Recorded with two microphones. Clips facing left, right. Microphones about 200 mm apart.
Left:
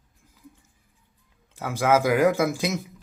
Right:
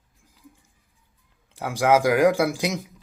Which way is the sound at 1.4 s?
15° right (ahead or behind).